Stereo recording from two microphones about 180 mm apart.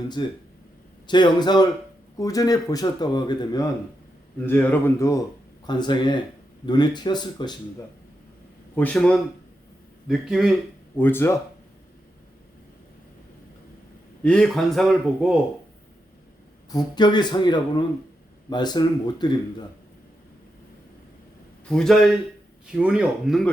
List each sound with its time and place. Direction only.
0.2 s a man's voice: 25° left (ahead or behind)
4.4 s a man's voice: 10° left (ahead or behind)
8.7 s speech: 10° left (ahead or behind)
10.9 s speech: 10° left (ahead or behind)
14.3 s speech: 5° left (ahead or behind)
16.7 s a man's voice: 25° left (ahead or behind)
21.7 s speech: 5° left (ahead or behind)